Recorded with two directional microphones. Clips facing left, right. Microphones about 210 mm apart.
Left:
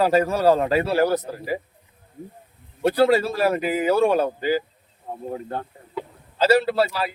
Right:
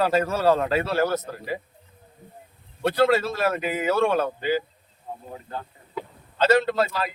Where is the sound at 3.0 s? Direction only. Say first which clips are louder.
Left 2 dB; 15° left (ahead or behind).